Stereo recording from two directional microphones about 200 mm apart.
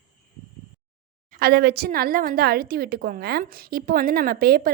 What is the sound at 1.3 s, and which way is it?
Speech, 50° right (ahead or behind).